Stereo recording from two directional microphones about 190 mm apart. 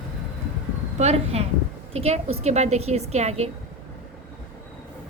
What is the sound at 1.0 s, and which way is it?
A woman's voice, 35° right (ahead or behind).